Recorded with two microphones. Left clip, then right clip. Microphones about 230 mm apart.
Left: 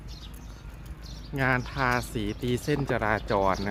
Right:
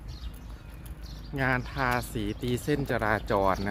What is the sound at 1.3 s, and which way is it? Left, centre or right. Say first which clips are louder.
Speech: left 2 dB; centre.